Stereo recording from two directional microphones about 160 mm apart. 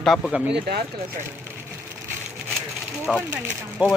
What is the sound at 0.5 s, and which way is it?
Speech, 90° right.